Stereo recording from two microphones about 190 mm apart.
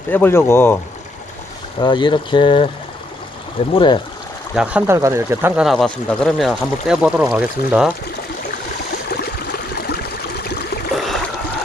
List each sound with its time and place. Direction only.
0.1 s speech: 10° left (ahead or behind)
1.8 s speech: 25° left (ahead or behind)
3.8 s speech: 25° left (ahead or behind)
4.5 s speech: 5° right (ahead or behind)
9.0 s a sound: 55° left (ahead or behind)
10.9 s a sound: centre (ahead or behind)